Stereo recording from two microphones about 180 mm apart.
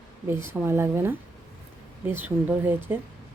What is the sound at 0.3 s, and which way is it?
Speech, 15° right (ahead or behind).